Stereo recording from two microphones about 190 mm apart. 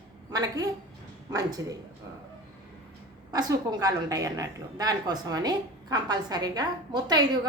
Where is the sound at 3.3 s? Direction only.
20° right (ahead or behind).